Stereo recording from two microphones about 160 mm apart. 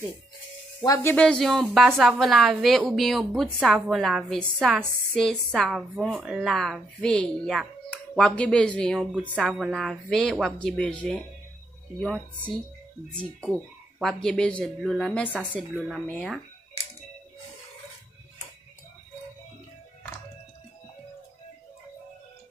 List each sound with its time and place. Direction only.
0.7 s speech: 20° left (ahead or behind)
1.1 s a woman's voice: 5° left (ahead or behind)
13.1 s a woman's voice: 5° left (ahead or behind)